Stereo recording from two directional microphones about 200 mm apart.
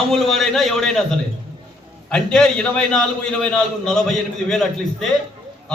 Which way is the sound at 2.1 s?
5° left (ahead or behind).